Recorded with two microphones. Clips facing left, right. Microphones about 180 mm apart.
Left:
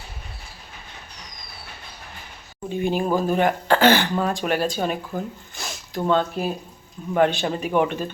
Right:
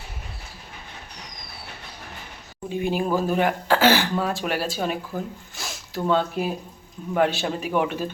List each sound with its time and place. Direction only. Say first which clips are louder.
2.6 s speech: left 2 dB; 5° right (ahead or behind)